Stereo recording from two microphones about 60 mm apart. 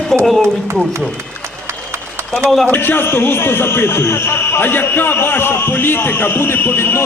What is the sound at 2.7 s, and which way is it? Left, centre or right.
A man's voice, left.